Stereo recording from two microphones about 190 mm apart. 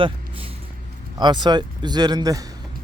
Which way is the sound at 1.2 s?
25° right (ahead or behind).